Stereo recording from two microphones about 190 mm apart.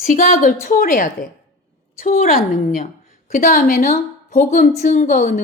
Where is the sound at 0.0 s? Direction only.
50° left (ahead or behind).